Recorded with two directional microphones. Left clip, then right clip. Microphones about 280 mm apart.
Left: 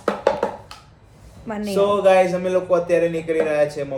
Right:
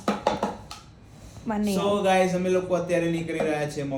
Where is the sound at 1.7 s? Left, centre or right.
Left.